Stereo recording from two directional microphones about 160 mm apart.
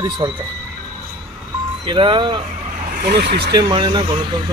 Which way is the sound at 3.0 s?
80° right.